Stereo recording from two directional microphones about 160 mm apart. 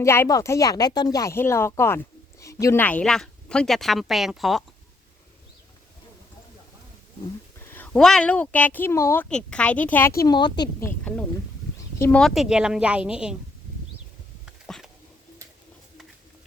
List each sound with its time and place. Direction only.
0.0 s a woman's voice: 15° left (ahead or behind); by 4.6 s centre (ahead or behind)
7.6 s speech: 15° left (ahead or behind)
10.2 s speech: 25° left (ahead or behind)
10.8 s speech: 10° left (ahead or behind)
12.2 s a woman's voice: centre (ahead or behind)
14.4 s dog: centre (ahead or behind)